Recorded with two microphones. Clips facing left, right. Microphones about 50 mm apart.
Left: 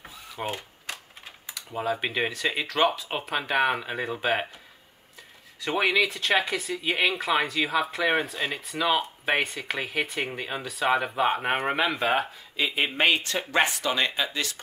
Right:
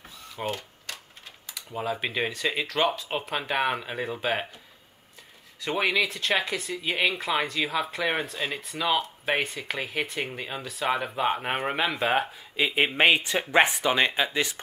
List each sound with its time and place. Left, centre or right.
0.4 s a sound: centre
1.7 s speech: centre
5.6 s speech: centre; by 14.6 s right